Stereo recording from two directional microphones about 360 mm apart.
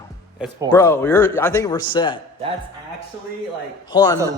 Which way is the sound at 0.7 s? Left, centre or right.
Centre.